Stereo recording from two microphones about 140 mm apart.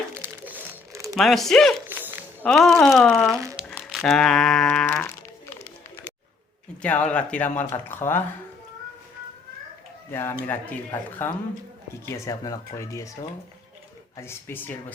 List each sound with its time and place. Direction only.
0.2 s crumpling: 15° right (ahead or behind)
1.1 s speech: centre (ahead or behind)
1.9 s a sound: 15° right (ahead or behind)
2.4 s speech: 5° left (ahead or behind)
6.8 s speech: 10° left (ahead or behind)
10.1 s speech: 15° left (ahead or behind)
14.2 s speech: 15° left (ahead or behind)